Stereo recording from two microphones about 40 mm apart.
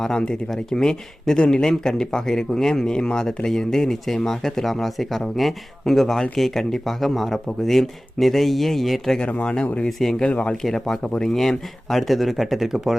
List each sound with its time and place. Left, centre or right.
0.7 s a man's voice: centre
9.2 s speech: left
10.0 s speech: centre
10.2 s speech: left
10.6 s speech: centre
11.0 s a man's voice: left
11.3 s speech: centre